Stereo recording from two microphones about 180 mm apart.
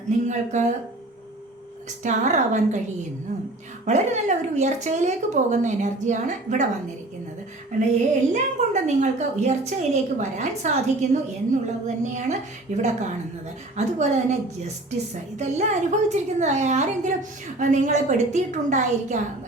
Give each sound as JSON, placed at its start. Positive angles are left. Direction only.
{"t": 0.3, "sound": "a woman's voice", "side_deg": -40}
{"t": 2.0, "sound": "a woman's voice", "side_deg": -40}
{"t": 3.8, "sound": "a woman's voice", "side_deg": -40}
{"t": 7.7, "sound": "a woman's voice", "side_deg": -40}